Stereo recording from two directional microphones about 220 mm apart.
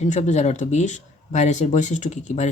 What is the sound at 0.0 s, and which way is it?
Speech, 30° left (ahead or behind).